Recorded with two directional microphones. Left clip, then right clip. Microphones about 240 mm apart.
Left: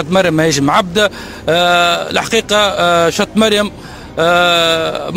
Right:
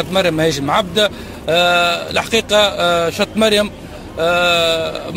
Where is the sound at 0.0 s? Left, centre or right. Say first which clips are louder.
Left 3 dB; left.